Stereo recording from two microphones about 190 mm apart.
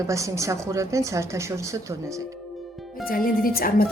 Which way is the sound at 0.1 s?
15° right (ahead or behind).